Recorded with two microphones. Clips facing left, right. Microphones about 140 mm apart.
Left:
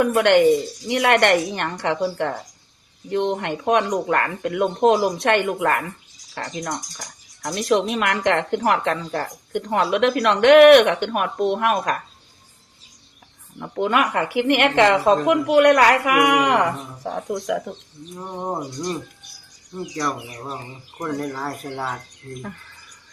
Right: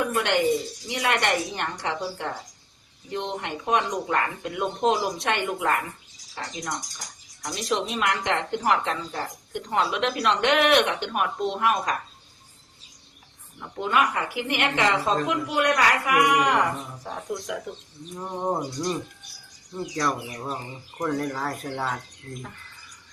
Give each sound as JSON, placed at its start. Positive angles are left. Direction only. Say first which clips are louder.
{"t": 0.0, "sound": "a woman's voice", "louder": "left 8 dB", "side_deg": 65}
{"t": 7.4, "sound": "a woman's voice", "louder": "left 7 dB", "side_deg": 60}
{"t": 13.6, "sound": "speech", "louder": "left 4 dB", "side_deg": 65}
{"t": 18.3, "sound": "speech", "louder": "even", "side_deg": 5}
{"t": 20.0, "sound": "speech", "louder": "even", "side_deg": 0}